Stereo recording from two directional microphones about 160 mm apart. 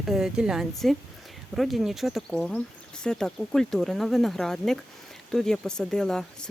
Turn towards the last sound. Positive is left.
turn(degrees=5)  # may be behind; listen again after turning